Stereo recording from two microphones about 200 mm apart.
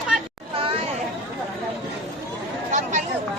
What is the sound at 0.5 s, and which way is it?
Chatter, 25° right (ahead or behind).